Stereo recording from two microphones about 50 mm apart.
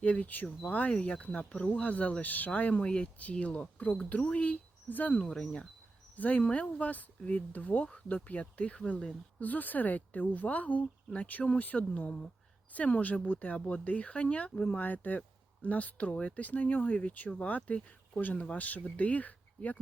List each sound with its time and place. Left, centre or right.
0.0 s a woman's voice: left
5.2 s speech: centre
6.1 s a woman's voice: left; by 9.1 s centre
9.4 s a woman's voice: left